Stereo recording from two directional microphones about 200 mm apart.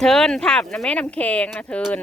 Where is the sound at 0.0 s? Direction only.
5° left (ahead or behind).